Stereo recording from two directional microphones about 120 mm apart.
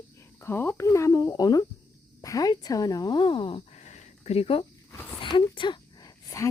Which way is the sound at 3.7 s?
70° left (ahead or behind).